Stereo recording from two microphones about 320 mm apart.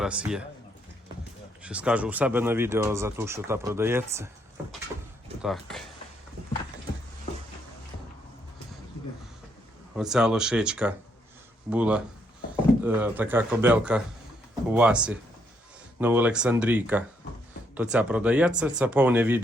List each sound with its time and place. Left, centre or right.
0.0 s speech: centre
1.6 s speech: centre
5.4 s speech: centre
9.9 s speech: centre